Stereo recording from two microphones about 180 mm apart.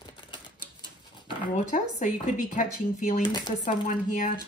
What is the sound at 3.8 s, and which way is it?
Speech, 50° left (ahead or behind).